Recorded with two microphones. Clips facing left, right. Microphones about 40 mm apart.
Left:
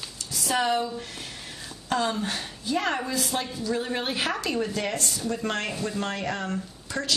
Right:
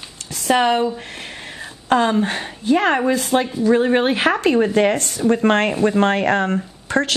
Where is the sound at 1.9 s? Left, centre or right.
Right.